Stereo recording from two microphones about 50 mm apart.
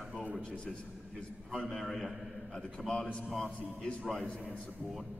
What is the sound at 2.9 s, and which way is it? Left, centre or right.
Speech, centre.